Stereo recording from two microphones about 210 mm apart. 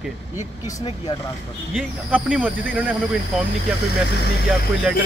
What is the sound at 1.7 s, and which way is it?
Speech, 5° right (ahead or behind).